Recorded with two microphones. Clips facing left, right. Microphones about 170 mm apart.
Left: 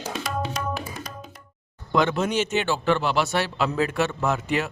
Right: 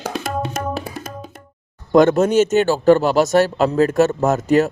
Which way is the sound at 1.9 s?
45° right (ahead or behind).